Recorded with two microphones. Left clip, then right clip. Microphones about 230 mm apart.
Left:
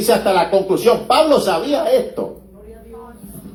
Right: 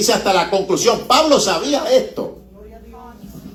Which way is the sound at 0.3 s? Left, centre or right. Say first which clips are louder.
Left 1 dB; right.